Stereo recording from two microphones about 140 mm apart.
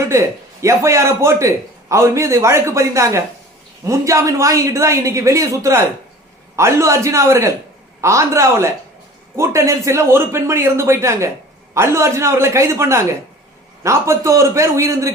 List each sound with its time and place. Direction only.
0.1 s a man's voice: 20° right (ahead or behind)